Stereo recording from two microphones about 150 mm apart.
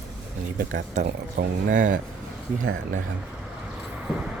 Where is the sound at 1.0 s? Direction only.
65° right (ahead or behind).